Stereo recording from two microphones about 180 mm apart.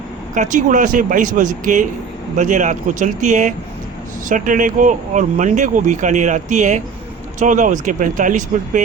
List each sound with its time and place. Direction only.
0.3 s speech: 45° right (ahead or behind)